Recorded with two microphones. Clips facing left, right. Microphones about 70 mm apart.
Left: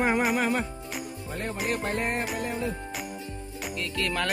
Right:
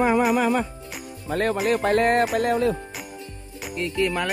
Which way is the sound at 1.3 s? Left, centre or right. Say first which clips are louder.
Right 9 dB; right.